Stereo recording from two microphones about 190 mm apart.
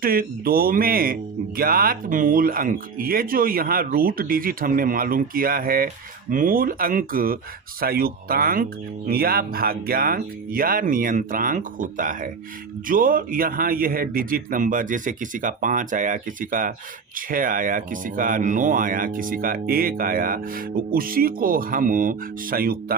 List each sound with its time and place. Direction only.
0.0 s speech: 50° right (ahead or behind)